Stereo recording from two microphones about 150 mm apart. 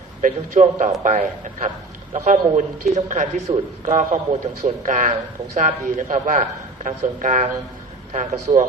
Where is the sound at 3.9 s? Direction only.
55° right (ahead or behind).